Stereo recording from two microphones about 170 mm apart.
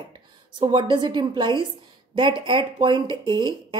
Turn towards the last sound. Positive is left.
turn(degrees=-25)  # may be behind; listen again after turning